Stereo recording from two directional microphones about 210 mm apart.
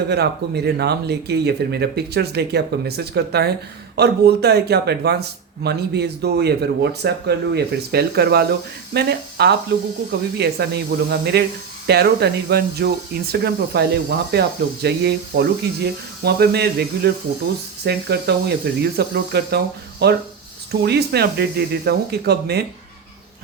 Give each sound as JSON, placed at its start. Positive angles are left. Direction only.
{"t": 0.1, "sound": "a man's voice", "side_deg": -50}